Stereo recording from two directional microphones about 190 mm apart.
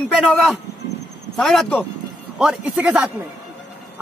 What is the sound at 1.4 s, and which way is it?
A man's voice, centre (ahead or behind).